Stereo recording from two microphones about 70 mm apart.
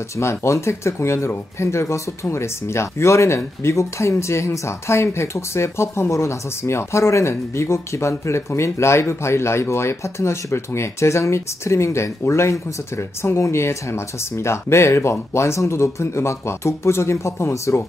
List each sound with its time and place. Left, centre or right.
0.1 s speech: left